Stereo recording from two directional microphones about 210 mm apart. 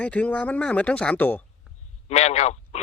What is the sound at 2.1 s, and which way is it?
Speech, 30° left (ahead or behind).